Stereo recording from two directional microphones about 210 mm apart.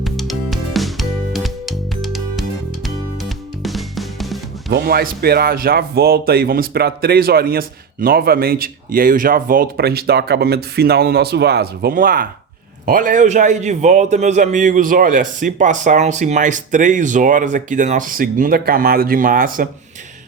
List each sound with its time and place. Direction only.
0.0 s music: centre (ahead or behind)
4.7 s a man's voice: 45° right (ahead or behind)